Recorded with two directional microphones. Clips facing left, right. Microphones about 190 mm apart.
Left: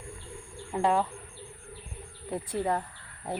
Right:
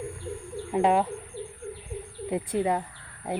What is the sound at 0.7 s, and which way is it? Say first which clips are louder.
Speech: right 4 dB; 20° right (ahead or behind).